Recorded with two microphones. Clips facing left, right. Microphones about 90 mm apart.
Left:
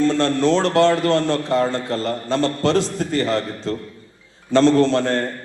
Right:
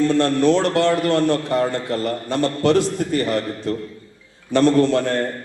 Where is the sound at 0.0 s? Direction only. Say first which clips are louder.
Right 1 dB; 20° left (ahead or behind).